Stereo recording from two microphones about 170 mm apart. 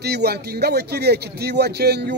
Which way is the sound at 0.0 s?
75° right (ahead or behind).